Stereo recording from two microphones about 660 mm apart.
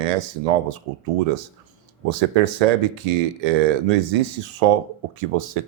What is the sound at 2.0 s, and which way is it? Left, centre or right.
Speech, right.